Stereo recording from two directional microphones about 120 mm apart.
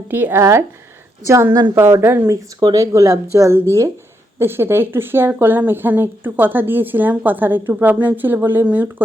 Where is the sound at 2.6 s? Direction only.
30° right (ahead or behind).